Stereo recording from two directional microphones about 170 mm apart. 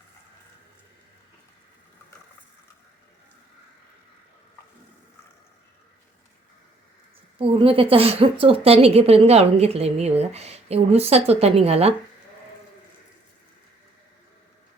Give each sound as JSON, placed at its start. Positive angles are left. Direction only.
{"t": 7.3, "sound": "a woman's voice", "side_deg": -30}